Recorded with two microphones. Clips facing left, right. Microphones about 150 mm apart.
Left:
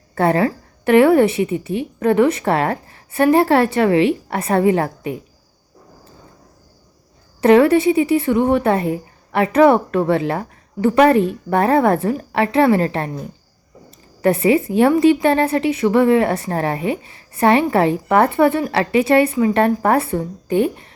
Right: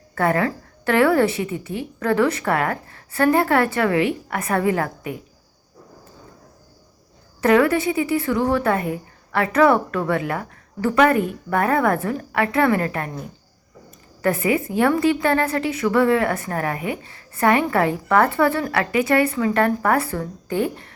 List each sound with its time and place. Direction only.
0.1 s a woman's voice: 25° left (ahead or behind)
7.4 s a woman's voice: 25° left (ahead or behind)
14.2 s a woman's voice: 25° left (ahead or behind)